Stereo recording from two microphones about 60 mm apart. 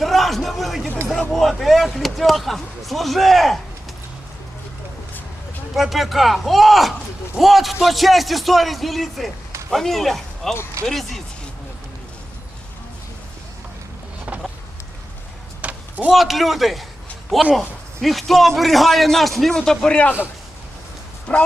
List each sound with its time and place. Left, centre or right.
0.0 s a sound: centre
1.3 s speech: centre
5.7 s speech: centre
14.3 s vehicle: right
15.6 s a sound: right
16.1 s speech: centre
21.3 s speech: left